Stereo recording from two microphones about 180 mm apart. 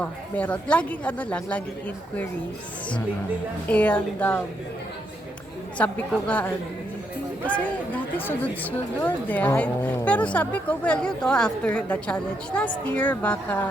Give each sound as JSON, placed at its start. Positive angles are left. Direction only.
{"t": 0.0, "sound": "speech", "side_deg": 5}
{"t": 3.7, "sound": "speech", "side_deg": 5}
{"t": 5.7, "sound": "speech", "side_deg": 10}